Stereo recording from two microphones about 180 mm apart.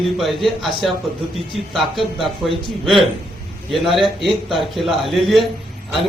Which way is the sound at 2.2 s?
30° right (ahead or behind).